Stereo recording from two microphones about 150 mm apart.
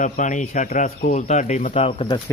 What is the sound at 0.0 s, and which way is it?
Speech, 55° left (ahead or behind).